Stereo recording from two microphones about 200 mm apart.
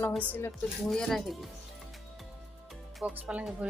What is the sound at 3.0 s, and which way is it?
Speech, 5° right (ahead or behind).